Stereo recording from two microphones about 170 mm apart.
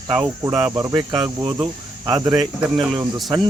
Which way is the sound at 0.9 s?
25° right (ahead or behind).